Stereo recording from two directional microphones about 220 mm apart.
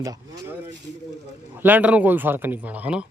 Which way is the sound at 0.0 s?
15° right (ahead or behind).